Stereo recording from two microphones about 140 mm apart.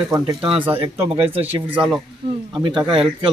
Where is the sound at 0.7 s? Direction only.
40° right (ahead or behind).